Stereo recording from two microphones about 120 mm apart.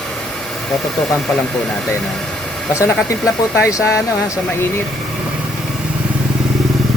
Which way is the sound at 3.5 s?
25° left (ahead or behind).